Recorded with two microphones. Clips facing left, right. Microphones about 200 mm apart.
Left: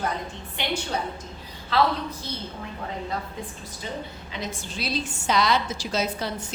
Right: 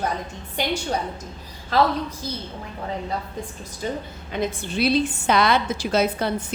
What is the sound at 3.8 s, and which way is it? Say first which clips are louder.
A woman's voice: right 6 dB; 50° right (ahead or behind).